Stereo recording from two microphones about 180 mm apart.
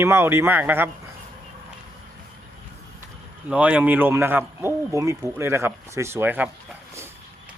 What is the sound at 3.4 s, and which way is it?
A man's voice, 5° right (ahead or behind).